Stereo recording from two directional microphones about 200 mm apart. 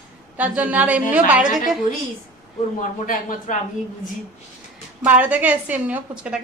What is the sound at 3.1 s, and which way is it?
Speech, 40° left (ahead or behind).